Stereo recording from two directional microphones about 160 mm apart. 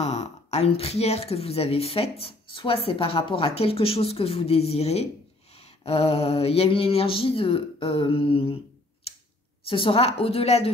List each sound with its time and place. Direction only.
0.0 s speech: 40° left (ahead or behind)
9.7 s speech: 35° left (ahead or behind)